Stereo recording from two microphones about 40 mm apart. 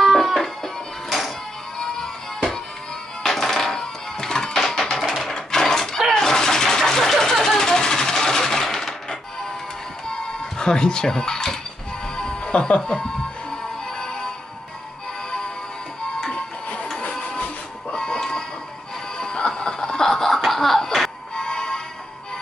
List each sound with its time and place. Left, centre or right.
0.0 s music: centre
1.8 s music: centre
4.6 s a sound: centre
10.6 s speech: centre
12.2 s music: centre
17.9 s music: centre